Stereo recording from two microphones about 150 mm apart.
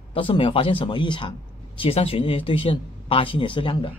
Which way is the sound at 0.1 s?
35° left (ahead or behind).